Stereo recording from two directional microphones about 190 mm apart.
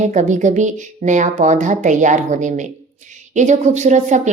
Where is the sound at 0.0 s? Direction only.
40° right (ahead or behind).